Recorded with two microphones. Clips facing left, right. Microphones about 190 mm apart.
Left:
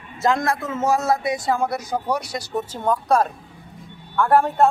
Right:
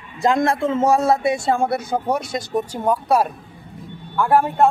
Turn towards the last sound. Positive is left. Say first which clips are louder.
# even
turn(degrees=-5)  # may be behind; listen again after turning